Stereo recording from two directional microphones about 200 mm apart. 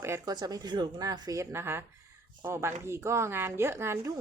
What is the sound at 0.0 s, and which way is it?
A woman's voice, 15° right (ahead or behind).